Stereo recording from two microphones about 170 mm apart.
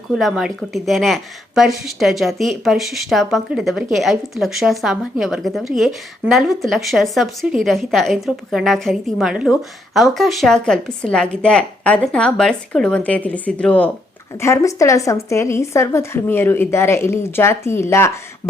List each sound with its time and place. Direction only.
0.1 s a woman's voice: centre (ahead or behind); by 18.1 s 15° left (ahead or behind)